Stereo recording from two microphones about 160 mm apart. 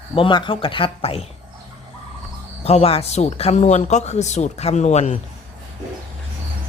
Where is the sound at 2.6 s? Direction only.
40° left (ahead or behind).